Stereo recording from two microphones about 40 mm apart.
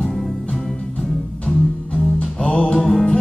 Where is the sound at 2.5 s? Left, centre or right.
Left.